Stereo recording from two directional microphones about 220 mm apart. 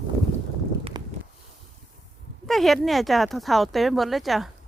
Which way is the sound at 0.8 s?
20° right (ahead or behind).